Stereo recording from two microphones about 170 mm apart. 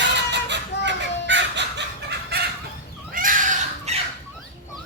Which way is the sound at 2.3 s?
70° right (ahead or behind).